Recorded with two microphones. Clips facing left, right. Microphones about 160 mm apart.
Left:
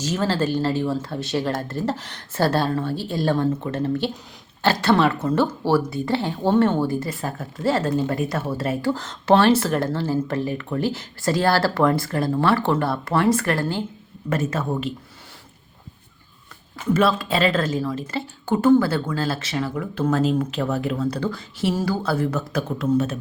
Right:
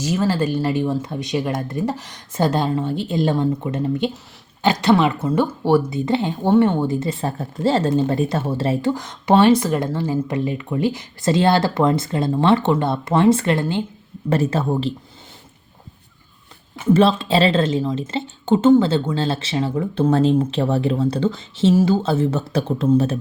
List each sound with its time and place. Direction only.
0.0 s speech: 10° right (ahead or behind); by 8.9 s 25° right (ahead or behind)
8.9 s speech: 15° right (ahead or behind)
14.3 s speech: 30° right (ahead or behind)
16.9 s speech: 25° right (ahead or behind)